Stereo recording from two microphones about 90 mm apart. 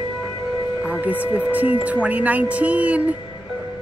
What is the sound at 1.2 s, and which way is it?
Speech, 15° right (ahead or behind).